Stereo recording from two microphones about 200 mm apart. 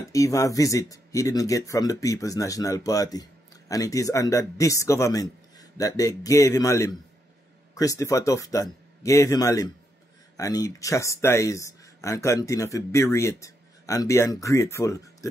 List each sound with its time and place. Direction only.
0.1 s speech: 15° left (ahead or behind)